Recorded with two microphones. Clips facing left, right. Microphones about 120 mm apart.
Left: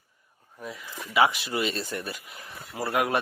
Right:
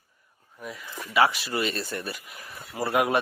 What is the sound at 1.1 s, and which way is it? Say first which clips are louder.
Speech: even; 15° left (ahead or behind).